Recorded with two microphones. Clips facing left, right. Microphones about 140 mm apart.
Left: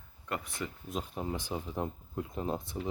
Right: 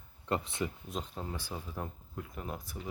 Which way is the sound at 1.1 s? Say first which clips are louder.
Left 5 dB; 15° left (ahead or behind).